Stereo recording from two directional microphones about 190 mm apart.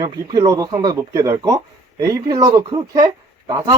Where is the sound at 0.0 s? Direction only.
20° right (ahead or behind).